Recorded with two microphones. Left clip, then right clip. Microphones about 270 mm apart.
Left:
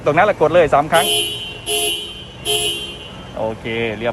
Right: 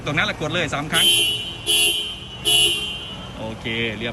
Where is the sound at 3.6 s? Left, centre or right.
Centre.